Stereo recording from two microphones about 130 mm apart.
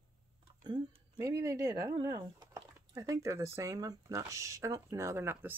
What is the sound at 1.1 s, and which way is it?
Speech, 25° right (ahead or behind).